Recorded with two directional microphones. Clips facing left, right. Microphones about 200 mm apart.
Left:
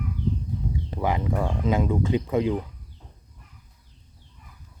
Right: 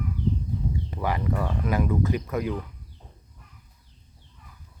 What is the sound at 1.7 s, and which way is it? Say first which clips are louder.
Speech: left 1 dB; 25° left (ahead or behind).